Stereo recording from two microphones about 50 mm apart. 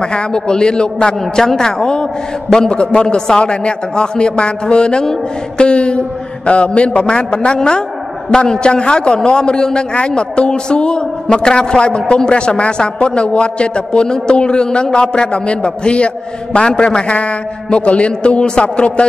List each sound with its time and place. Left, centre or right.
0.0 s a man's voice: centre
1.2 s a man's voice: centre; by 19.0 s left